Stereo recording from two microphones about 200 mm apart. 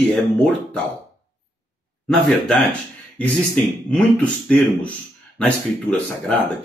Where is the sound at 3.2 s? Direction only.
5° left (ahead or behind).